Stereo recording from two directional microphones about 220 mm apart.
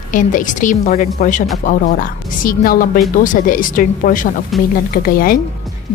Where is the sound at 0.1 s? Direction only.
35° left (ahead or behind).